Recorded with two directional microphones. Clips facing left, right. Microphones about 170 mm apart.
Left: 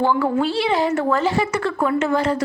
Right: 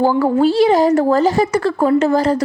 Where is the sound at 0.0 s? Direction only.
35° right (ahead or behind).